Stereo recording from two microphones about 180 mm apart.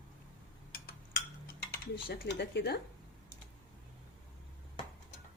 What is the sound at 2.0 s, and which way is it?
Speech, 60° left (ahead or behind).